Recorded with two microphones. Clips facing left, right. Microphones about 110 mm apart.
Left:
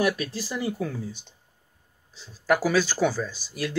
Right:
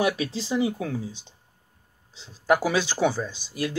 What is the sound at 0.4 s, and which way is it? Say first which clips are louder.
Speech: right 4 dB; 20° right (ahead or behind).